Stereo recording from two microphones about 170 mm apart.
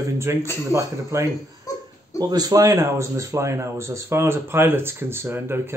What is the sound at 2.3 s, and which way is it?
Speech, 20° right (ahead or behind).